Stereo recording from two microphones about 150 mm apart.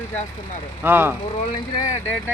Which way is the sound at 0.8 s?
15° right (ahead or behind).